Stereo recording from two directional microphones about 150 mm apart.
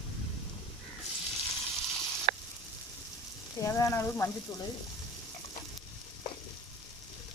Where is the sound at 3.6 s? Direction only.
20° left (ahead or behind).